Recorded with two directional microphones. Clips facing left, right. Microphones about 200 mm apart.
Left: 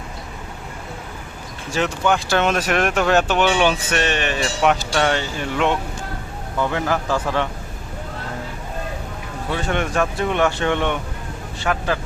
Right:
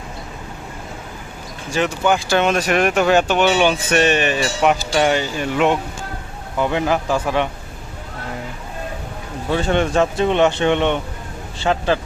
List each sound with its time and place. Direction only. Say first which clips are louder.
1.7 s speech: right 2 dB; centre (ahead or behind)
9.5 s speech: right 5 dB; 30° right (ahead or behind)